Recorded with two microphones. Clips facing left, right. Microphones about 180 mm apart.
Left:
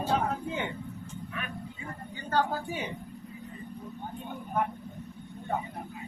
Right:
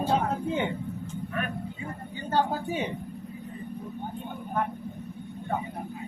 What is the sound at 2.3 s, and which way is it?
Speech, 20° right (ahead or behind).